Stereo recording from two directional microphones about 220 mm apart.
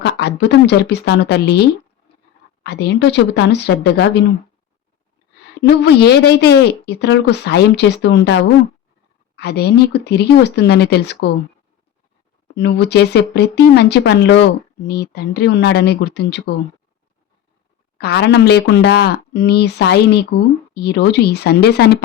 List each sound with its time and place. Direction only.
0.0 s a woman's voice: 50° left (ahead or behind)
2.6 s a woman's voice: 50° left (ahead or behind)
5.6 s a woman's voice: 50° left (ahead or behind)
12.5 s a woman's voice: 50° left (ahead or behind)
17.9 s a woman's voice: 45° left (ahead or behind)